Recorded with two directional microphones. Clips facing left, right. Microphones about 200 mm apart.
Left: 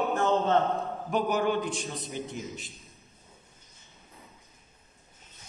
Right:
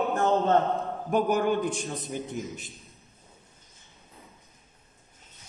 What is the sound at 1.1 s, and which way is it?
Speech, 50° right (ahead or behind).